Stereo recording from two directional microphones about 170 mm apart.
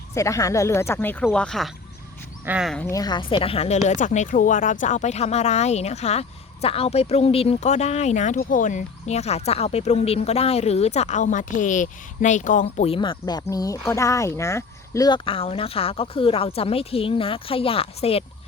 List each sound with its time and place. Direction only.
0.1 s speech: 20° left (ahead or behind); by 2.7 s 5° right (ahead or behind)
2.9 s speech: 25° left (ahead or behind)